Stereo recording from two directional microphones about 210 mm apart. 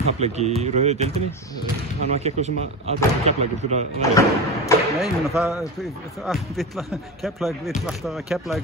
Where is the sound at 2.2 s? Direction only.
30° right (ahead or behind).